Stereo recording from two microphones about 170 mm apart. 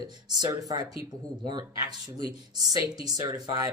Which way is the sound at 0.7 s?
20° right (ahead or behind).